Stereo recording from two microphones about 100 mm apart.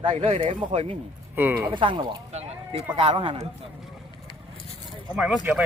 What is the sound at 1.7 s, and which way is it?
Speech, 55° right (ahead or behind).